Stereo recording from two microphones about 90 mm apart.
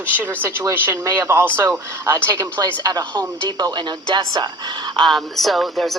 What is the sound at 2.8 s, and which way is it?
Speech, 50° right (ahead or behind).